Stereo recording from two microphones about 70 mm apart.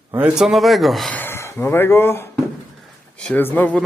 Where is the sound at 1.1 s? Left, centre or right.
Left.